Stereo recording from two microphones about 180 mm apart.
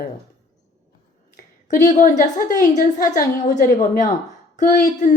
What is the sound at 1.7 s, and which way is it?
A woman's voice, 45° left (ahead or behind).